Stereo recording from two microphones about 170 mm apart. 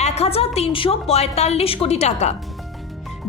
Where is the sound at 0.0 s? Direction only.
40° left (ahead or behind).